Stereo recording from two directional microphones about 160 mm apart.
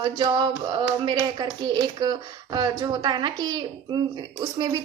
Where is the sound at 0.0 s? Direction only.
30° right (ahead or behind).